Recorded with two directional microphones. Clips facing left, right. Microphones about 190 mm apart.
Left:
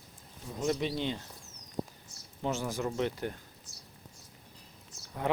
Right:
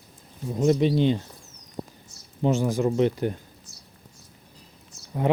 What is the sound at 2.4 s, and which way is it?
Speech, 15° right (ahead or behind).